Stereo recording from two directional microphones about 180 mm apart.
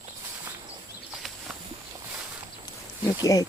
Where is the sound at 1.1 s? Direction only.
Centre (ahead or behind).